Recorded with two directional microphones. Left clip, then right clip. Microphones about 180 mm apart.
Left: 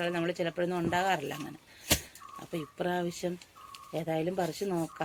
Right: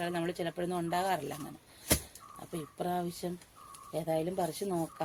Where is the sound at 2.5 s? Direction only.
20° left (ahead or behind).